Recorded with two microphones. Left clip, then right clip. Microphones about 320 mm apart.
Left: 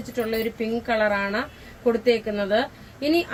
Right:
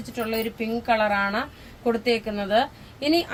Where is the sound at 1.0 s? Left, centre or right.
Right.